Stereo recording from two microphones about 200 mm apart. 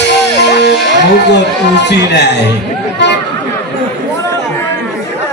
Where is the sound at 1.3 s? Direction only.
60° left (ahead or behind).